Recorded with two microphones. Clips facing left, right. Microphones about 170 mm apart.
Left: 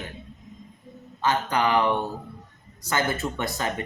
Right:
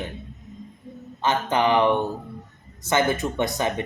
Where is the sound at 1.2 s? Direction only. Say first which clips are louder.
Right 2 dB; 20° right (ahead or behind).